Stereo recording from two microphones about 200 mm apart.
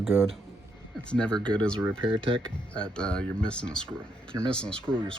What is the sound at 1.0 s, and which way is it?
Speech, 5° left (ahead or behind).